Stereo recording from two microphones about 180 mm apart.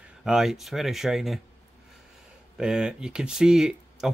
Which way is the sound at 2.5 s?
5° right (ahead or behind).